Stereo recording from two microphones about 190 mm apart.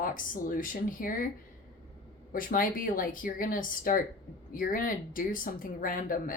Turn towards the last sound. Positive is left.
turn(degrees=45)  # may be behind; listen again after turning